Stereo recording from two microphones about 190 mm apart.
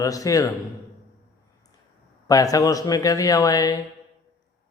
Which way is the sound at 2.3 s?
20° left (ahead or behind).